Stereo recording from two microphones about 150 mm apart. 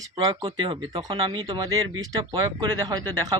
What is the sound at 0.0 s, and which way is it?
A man's voice, 25° right (ahead or behind).